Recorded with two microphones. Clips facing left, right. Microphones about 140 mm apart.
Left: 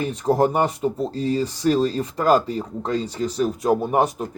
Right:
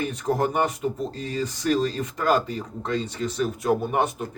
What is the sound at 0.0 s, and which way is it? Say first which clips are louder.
Speech: left 5 dB; 30° left (ahead or behind).